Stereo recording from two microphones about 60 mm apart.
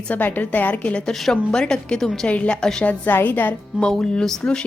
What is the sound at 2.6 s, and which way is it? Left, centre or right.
Speech, centre.